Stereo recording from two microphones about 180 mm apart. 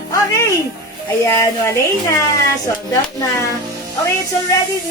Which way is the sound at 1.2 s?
15° left (ahead or behind).